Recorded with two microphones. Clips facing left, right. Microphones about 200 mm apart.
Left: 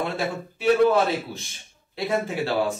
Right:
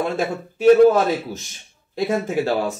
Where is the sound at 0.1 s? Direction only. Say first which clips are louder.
Right 4 dB; 45° right (ahead or behind).